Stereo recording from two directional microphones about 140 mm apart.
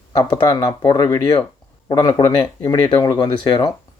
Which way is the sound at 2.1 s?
20° left (ahead or behind).